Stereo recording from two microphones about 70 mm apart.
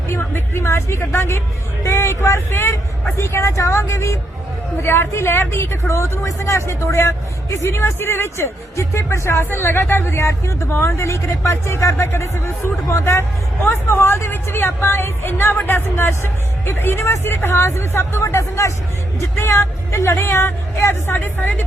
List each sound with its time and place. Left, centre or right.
0.1 s a woman's voice: left